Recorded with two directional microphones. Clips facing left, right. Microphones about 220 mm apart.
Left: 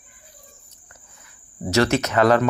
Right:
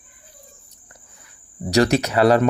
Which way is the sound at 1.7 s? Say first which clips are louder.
Right 2 dB; 35° right (ahead or behind).